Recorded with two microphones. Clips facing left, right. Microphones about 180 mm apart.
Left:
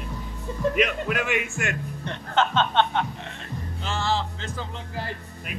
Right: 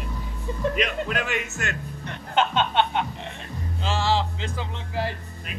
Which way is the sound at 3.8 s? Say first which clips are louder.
Right 3 dB; 90° right.